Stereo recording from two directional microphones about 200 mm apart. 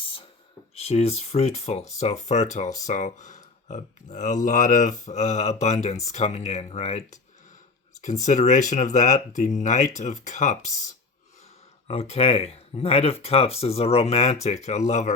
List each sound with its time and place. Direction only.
0.8 s speech: 30° left (ahead or behind)
8.2 s speech: 35° left (ahead or behind)
11.9 s speech: 30° left (ahead or behind)